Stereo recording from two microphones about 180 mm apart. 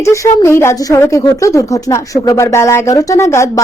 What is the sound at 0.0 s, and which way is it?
A woman's voice, 15° left (ahead or behind).